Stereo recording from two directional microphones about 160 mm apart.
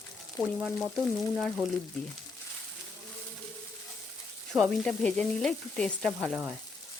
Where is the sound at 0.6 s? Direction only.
5° left (ahead or behind).